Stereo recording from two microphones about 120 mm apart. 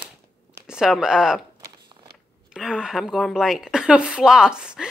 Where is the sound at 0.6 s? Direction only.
5° right (ahead or behind).